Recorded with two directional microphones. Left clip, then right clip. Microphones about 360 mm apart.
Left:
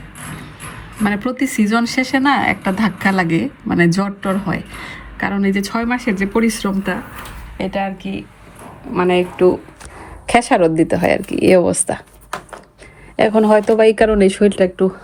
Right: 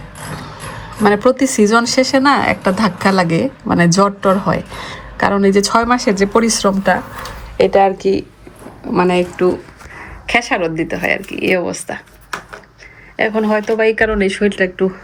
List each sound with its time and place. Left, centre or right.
1.0 s speech: centre
7.8 s speech: centre
8.9 s speech: centre
10.2 s speech: centre